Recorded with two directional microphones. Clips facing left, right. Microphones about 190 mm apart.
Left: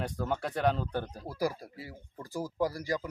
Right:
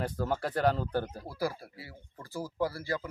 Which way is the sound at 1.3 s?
15° left (ahead or behind).